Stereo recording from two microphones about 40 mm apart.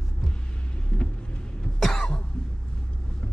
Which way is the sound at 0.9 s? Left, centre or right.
Left.